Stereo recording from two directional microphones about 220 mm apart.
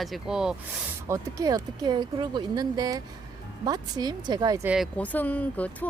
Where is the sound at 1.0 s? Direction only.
15° right (ahead or behind).